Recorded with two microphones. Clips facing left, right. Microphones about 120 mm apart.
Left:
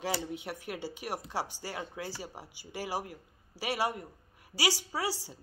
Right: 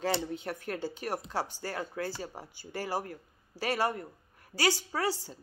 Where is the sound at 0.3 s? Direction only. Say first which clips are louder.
Right 3 dB; 15° left (ahead or behind).